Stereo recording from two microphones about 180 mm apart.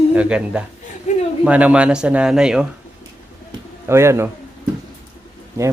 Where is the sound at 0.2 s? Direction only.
5° right (ahead or behind).